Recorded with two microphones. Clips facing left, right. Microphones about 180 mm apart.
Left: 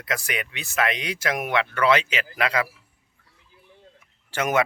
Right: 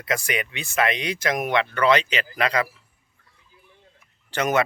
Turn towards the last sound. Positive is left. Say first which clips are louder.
# right 1 dB
turn(degrees=10)  # may be behind; listen again after turning